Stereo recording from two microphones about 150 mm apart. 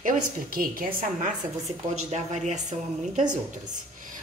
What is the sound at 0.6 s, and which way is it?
Speech, 65° right (ahead or behind).